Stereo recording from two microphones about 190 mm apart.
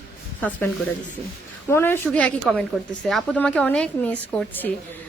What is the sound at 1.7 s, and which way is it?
A woman's voice, 10° left (ahead or behind).